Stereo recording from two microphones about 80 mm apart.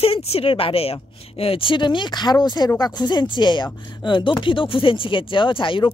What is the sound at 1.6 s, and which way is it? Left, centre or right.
Speech, left.